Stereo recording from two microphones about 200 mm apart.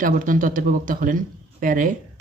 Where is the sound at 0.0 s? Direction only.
45° right (ahead or behind).